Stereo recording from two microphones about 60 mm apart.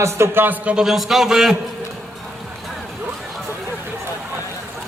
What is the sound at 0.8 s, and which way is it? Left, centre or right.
Speech, centre.